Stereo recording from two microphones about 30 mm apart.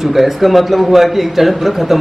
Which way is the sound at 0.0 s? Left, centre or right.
Centre.